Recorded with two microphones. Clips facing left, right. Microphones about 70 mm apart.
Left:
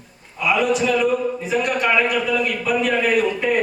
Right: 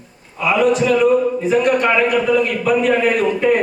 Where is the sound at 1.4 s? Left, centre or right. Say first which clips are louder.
Right 4 dB; right.